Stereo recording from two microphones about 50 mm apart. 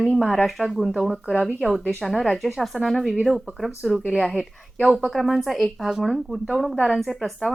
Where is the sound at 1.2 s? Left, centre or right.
Right.